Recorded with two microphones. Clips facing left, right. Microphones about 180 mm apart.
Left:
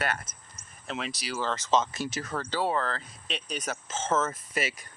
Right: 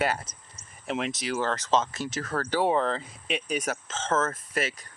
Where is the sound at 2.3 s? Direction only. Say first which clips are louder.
Right 5 dB; 10° right (ahead or behind).